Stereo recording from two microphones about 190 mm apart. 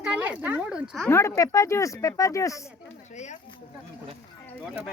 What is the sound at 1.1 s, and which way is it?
Speech, 15° left (ahead or behind).